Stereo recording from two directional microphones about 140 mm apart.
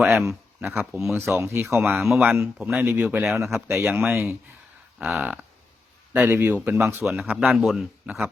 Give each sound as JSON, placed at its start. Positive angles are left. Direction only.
{"t": 0.1, "sound": "speech", "side_deg": -15}
{"t": 0.8, "sound": "a man's voice", "side_deg": 0}
{"t": 1.1, "sound": "speech", "side_deg": -20}
{"t": 2.0, "sound": "a man's voice", "side_deg": 0}
{"t": 7.3, "sound": "a man's voice", "side_deg": 0}